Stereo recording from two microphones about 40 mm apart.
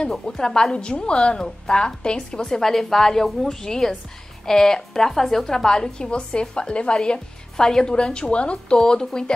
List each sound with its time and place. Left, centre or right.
0.4 s a woman's voice: centre